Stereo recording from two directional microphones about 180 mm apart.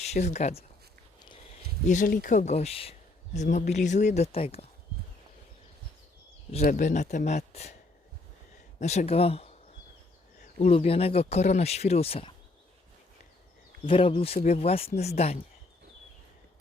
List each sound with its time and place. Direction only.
0.0 s speech: 40° left (ahead or behind)
1.9 s speech: 45° left (ahead or behind)
6.5 s speech: 45° left (ahead or behind)
8.8 s speech: 40° left (ahead or behind)
10.7 s speech: 30° left (ahead or behind)
13.8 s speech: 30° left (ahead or behind)